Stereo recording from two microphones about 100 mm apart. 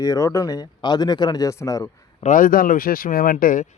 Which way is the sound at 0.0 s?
35° left (ahead or behind).